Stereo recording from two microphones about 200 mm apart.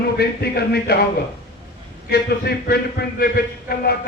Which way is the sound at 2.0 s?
55° left (ahead or behind).